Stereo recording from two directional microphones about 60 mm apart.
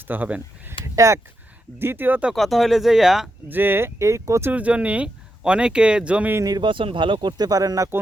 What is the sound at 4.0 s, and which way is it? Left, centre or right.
Speech, right.